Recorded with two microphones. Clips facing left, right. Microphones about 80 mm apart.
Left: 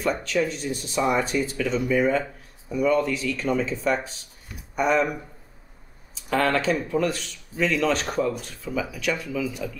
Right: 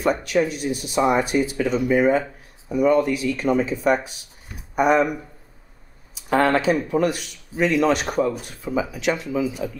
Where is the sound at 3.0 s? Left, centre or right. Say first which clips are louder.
Right 4 dB; centre.